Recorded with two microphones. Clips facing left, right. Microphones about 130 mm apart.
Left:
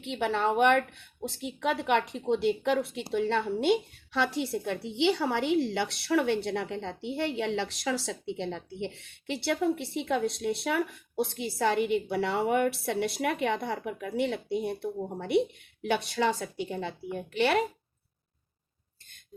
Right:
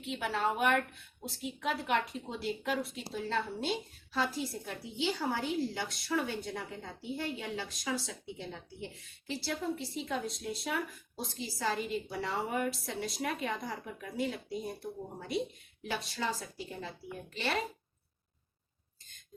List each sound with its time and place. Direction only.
0.2 s a woman's voice: 60° left (ahead or behind)